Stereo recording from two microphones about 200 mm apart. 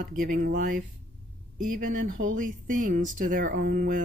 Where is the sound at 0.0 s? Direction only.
40° right (ahead or behind).